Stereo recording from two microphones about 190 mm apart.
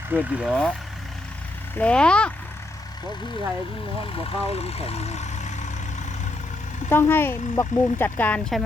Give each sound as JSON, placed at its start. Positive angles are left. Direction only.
{"t": 0.1, "sound": "speech", "side_deg": -5}
{"t": 1.8, "sound": "speech", "side_deg": 5}
{"t": 4.0, "sound": "speech", "side_deg": 30}
{"t": 6.8, "sound": "speech", "side_deg": 10}